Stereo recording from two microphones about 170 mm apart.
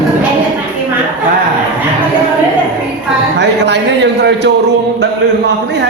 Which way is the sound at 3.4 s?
90° right.